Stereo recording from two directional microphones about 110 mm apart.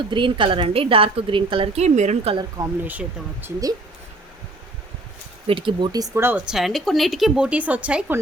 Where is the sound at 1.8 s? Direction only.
90° right.